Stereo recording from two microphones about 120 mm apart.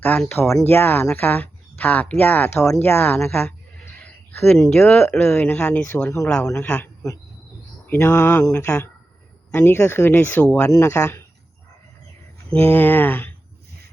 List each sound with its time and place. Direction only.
0.0 s speech: 15° left (ahead or behind)
3.9 s speech: 5° left (ahead or behind)
10.7 s speech: 20° left (ahead or behind)
12.5 s speech: 15° left (ahead or behind)